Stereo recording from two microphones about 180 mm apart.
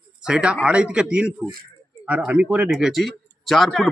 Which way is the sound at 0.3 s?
5° right (ahead or behind).